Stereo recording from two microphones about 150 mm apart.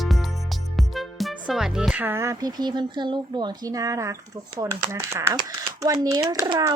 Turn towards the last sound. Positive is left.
turn(degrees=-25)  # may be behind; listen again after turning